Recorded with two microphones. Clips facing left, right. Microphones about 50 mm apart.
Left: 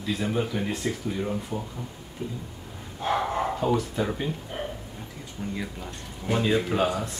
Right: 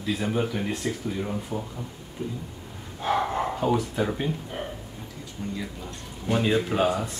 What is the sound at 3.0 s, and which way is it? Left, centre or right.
Speech, centre.